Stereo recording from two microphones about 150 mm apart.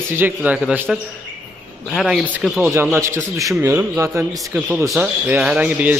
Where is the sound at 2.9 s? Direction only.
20° right (ahead or behind).